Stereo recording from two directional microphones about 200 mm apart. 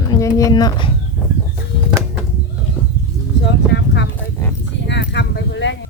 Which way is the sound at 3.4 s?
60° left (ahead or behind).